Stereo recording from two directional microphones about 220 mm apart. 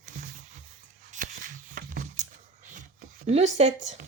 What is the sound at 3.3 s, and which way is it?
Speech, 30° right (ahead or behind).